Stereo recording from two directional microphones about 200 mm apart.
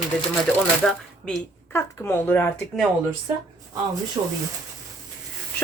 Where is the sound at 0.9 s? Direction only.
5° left (ahead or behind).